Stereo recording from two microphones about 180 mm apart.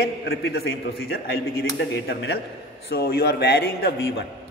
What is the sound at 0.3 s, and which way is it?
A man's voice, 65° left (ahead or behind).